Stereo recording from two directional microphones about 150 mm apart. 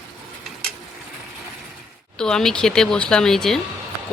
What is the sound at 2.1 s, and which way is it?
Speech, 5° left (ahead or behind).